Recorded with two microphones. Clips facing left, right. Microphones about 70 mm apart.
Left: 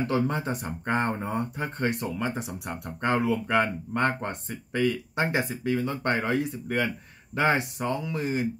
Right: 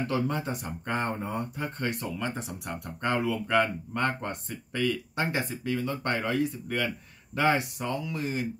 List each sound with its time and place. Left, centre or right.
0.0 s speech: left